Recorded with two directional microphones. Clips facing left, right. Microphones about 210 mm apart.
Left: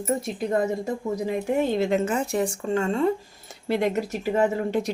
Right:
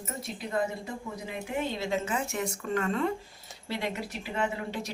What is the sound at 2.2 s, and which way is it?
Speech, 35° left (ahead or behind).